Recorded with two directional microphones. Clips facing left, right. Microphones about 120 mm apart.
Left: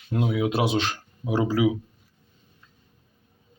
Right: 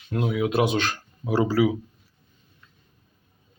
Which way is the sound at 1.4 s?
10° left (ahead or behind).